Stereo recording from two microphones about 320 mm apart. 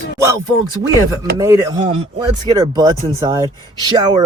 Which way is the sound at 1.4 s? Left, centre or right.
Centre.